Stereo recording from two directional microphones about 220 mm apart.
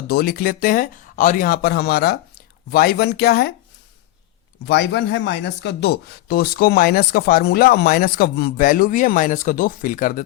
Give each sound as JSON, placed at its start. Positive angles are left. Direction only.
{"t": 0.1, "sound": "speech", "side_deg": 45}
{"t": 4.6, "sound": "speech", "side_deg": 50}